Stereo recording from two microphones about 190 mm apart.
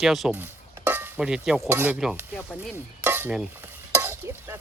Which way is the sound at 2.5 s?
10° right (ahead or behind).